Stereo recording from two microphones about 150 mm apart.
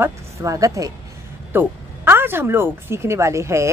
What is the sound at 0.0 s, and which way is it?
A woman's voice, 20° right (ahead or behind).